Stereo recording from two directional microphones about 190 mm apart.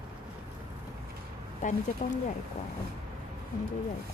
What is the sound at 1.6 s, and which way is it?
Speech, 40° left (ahead or behind).